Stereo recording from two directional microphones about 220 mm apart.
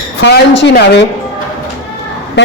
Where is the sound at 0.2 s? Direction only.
55° left (ahead or behind).